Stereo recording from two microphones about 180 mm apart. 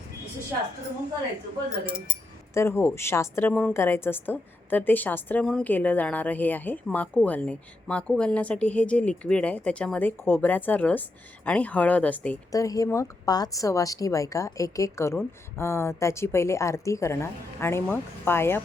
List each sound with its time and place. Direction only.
2.6 s a woman's voice: 15° left (ahead or behind)